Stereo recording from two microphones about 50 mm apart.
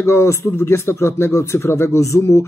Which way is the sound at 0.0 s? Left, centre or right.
Left.